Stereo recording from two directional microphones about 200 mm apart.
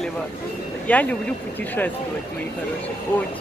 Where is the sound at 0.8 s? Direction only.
5° left (ahead or behind).